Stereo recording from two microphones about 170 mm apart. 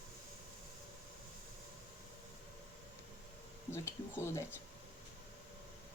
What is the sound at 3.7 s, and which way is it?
Speech, 15° left (ahead or behind).